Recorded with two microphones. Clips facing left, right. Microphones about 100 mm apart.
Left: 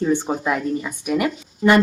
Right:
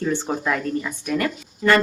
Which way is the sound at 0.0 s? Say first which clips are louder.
Left 3 dB; 15° left (ahead or behind).